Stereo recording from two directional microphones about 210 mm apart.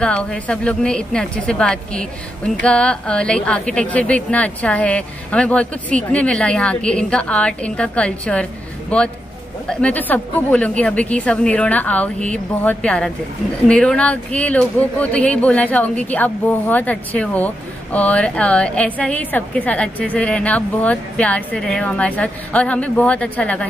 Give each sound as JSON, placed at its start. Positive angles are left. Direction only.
{"t": 0.0, "sound": "a woman's voice", "side_deg": 5}
{"t": 9.7, "sound": "a woman's voice", "side_deg": 5}